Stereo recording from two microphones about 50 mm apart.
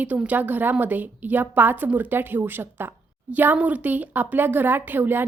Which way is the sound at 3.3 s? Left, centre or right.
Right.